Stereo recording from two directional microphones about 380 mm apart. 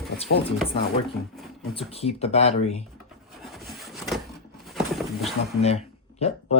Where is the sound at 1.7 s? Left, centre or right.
Centre.